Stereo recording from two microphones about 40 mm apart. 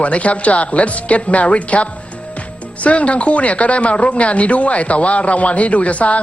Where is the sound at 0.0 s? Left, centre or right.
Left.